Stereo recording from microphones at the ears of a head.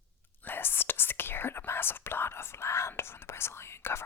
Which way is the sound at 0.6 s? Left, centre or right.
Left.